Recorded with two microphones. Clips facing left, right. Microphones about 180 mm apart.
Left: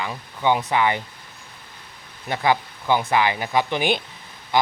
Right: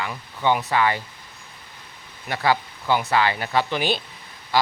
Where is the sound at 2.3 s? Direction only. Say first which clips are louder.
Left 1 dB; 20° left (ahead or behind).